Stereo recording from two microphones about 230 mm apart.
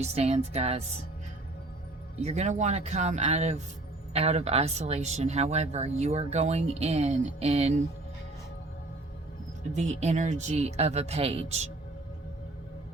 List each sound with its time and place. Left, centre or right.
0.0 s speech: right
2.1 s speech: right
9.7 s speech: right